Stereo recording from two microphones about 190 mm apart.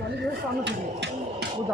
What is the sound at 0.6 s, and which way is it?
Speech, 65° right (ahead or behind).